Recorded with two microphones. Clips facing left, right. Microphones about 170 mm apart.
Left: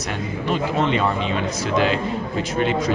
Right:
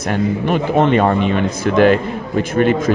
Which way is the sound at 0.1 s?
55° right (ahead or behind).